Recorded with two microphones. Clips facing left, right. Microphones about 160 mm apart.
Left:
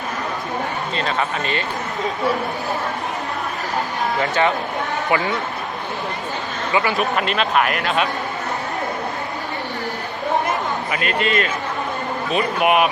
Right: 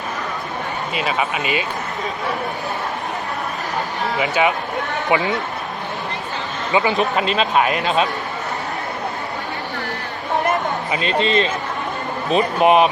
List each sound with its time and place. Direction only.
0.9 s speech: 15° right (ahead or behind)
4.2 s speech: 10° right (ahead or behind)
6.7 s speech: 20° right (ahead or behind)
10.9 s speech: 25° right (ahead or behind)